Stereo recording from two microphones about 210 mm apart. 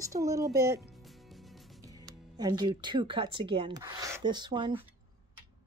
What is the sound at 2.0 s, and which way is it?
Speech, 20° right (ahead or behind).